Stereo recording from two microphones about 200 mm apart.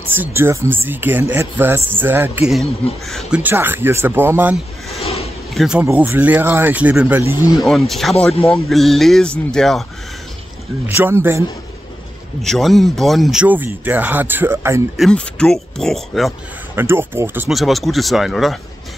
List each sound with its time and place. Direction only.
0.1 s speech: 10° right (ahead or behind)
4.9 s a sound: 30° left (ahead or behind)
5.5 s speech: centre (ahead or behind)
7.5 s speech: centre (ahead or behind)
10.9 s speech: 10° right (ahead or behind)
12.4 s speech: centre (ahead or behind)
15.0 s speech: 5° left (ahead or behind)
16.7 s speech: 10° right (ahead or behind)